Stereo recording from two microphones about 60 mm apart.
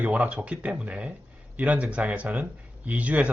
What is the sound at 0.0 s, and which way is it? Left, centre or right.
Speech, right.